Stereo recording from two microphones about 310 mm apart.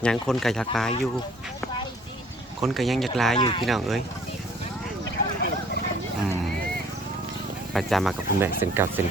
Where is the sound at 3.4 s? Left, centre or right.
Centre.